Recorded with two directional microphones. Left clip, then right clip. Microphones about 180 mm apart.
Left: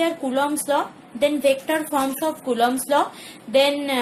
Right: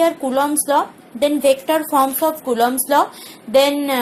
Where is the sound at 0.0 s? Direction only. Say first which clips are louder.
Right 5 dB; 35° right (ahead or behind).